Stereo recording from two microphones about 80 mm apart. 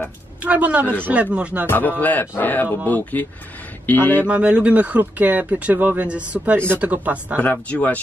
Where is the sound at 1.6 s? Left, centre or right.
Left.